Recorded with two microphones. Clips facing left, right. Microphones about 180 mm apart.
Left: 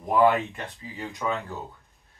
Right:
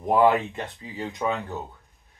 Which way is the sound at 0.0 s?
25° right (ahead or behind).